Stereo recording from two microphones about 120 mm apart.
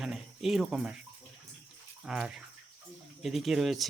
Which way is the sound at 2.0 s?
5° right (ahead or behind).